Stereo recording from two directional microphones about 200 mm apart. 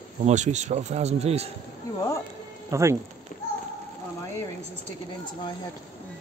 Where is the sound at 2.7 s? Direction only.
15° right (ahead or behind).